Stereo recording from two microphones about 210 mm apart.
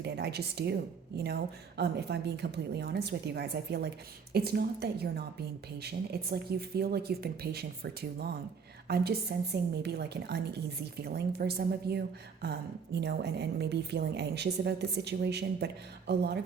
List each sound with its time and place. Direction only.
0.0 s a woman's voice: 50° right (ahead or behind)
8.9 s a woman's voice: 50° right (ahead or behind)